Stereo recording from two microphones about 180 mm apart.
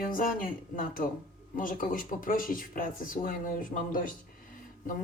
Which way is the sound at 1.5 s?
50° left (ahead or behind).